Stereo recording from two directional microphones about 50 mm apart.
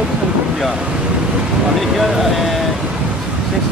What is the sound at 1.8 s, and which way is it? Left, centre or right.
Speech, centre.